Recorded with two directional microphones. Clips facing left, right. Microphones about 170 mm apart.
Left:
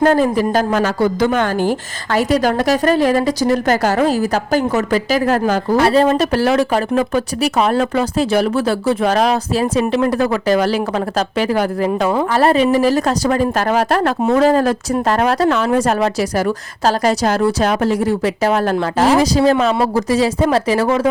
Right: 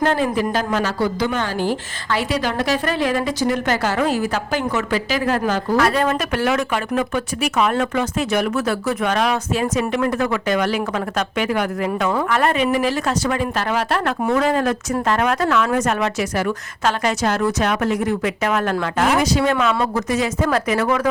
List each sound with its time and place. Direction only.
0.0 s a woman's voice: 40° left (ahead or behind)
5.7 s a woman's voice: 30° left (ahead or behind)